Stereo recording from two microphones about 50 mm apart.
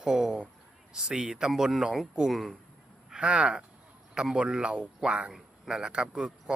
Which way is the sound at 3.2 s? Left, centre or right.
Right.